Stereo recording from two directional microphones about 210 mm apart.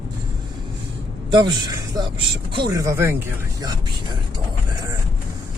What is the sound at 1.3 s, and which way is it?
Speech, 20° right (ahead or behind).